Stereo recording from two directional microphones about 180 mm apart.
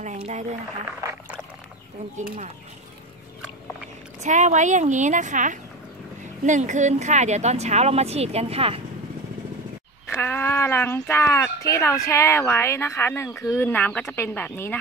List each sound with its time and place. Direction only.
0.3 s speech: 40° right (ahead or behind)
2.1 s speech: 45° right (ahead or behind)
4.2 s speech: 40° right (ahead or behind)
10.0 s speech: 10° left (ahead or behind)